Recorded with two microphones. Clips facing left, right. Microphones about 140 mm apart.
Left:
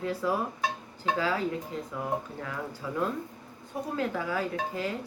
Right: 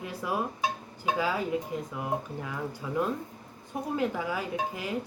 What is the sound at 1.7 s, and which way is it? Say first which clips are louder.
Speech: right 2 dB; 15° right (ahead or behind).